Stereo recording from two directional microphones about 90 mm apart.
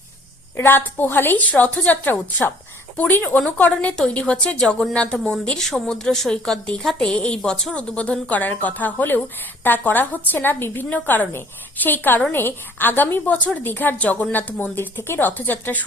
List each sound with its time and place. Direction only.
0.5 s a woman's voice: 25° left (ahead or behind)